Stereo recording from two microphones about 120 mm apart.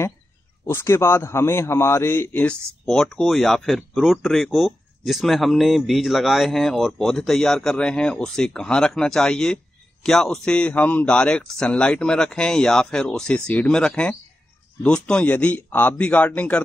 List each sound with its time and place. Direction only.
0.7 s a man's voice: 20° left (ahead or behind)
2.8 s a man's voice: 5° left (ahead or behind)